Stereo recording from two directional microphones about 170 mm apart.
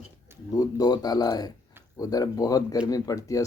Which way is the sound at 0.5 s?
20° left (ahead or behind).